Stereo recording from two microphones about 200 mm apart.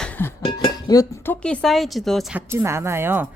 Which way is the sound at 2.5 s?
15° right (ahead or behind).